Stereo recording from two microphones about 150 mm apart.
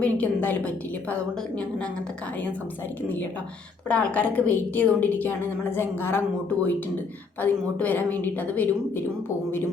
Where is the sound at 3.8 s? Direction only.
10° left (ahead or behind).